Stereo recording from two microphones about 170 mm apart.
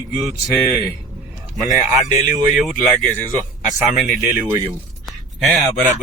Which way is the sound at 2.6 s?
Centre (ahead or behind).